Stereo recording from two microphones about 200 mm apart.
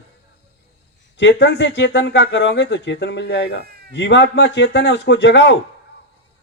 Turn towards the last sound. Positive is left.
turn(degrees=60)  # may be behind; listen again after turning